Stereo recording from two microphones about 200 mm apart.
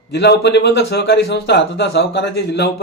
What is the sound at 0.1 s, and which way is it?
A man's voice, 60° left (ahead or behind).